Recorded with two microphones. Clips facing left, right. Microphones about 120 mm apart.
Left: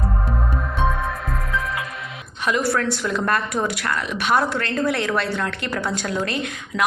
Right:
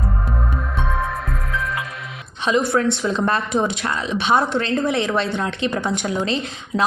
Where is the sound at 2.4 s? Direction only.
20° right (ahead or behind).